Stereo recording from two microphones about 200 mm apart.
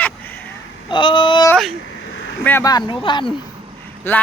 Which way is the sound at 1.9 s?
70° left (ahead or behind).